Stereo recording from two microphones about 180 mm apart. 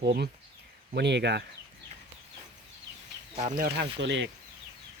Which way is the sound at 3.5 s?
60° right (ahead or behind).